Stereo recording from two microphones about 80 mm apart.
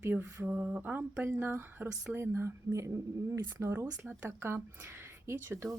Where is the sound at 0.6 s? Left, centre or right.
Centre.